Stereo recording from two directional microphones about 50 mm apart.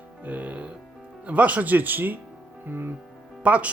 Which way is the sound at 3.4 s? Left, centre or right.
Right.